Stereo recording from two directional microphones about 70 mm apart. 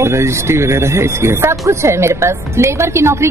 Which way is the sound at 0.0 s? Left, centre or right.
Right.